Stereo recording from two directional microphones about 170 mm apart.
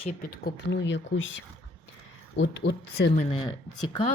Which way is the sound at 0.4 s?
90° left.